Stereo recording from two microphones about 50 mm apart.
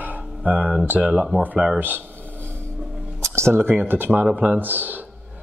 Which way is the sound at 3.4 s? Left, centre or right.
Right.